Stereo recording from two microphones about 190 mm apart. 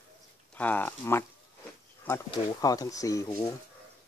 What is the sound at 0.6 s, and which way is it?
Speech, 10° left (ahead or behind).